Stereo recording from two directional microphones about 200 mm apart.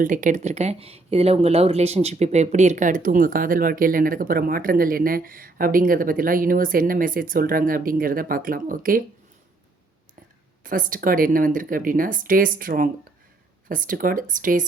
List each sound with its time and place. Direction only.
0.0 s speech: 40° right (ahead or behind)
10.6 s speech: 45° right (ahead or behind)